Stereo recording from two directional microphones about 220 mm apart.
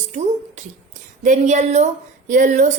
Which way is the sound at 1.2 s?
35° right (ahead or behind).